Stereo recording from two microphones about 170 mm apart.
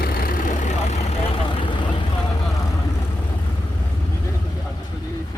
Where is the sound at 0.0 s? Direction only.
60° left (ahead or behind).